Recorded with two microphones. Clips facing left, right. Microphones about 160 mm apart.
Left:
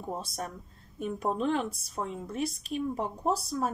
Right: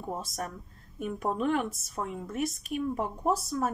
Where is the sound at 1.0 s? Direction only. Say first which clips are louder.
Even; 30° left (ahead or behind).